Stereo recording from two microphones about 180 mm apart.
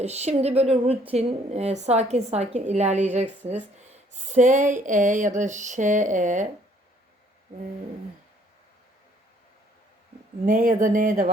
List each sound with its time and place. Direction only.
0.0 s a woman's voice: 35° right (ahead or behind)
10.4 s a woman's voice: 45° right (ahead or behind)